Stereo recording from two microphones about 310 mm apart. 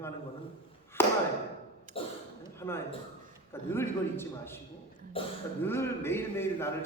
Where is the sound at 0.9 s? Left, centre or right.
Centre.